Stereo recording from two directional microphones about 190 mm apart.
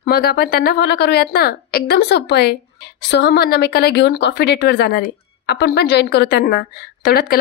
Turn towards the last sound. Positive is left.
turn(degrees=55)  # may be behind; listen again after turning